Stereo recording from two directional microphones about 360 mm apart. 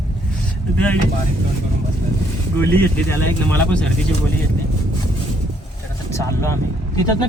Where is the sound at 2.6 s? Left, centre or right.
Centre.